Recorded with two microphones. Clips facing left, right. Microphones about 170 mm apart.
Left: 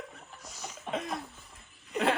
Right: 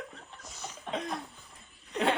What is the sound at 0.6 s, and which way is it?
Cough, 5° left (ahead or behind).